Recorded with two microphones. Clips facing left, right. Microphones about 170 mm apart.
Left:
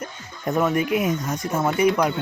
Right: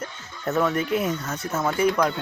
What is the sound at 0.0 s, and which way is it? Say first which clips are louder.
Speech: left 1 dB; 10° left (ahead or behind).